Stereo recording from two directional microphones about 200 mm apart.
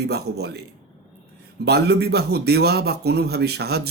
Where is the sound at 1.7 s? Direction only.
55° right (ahead or behind).